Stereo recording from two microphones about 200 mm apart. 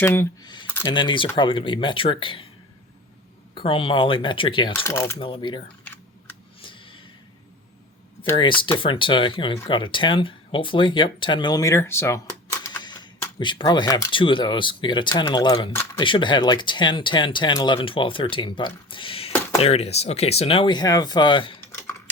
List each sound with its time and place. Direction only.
0.0 s speech: 10° left (ahead or behind)
3.5 s speech: 25° left (ahead or behind)
4.8 s speech: 10° left (ahead or behind)
5.2 s speech: 25° left (ahead or behind)
5.8 s typing: 10° left (ahead or behind)
8.8 s speech: 25° left (ahead or behind)